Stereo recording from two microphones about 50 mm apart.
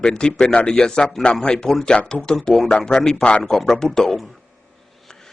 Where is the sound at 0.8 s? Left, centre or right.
Centre.